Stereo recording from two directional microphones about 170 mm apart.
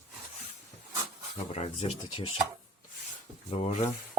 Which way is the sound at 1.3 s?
40° left (ahead or behind).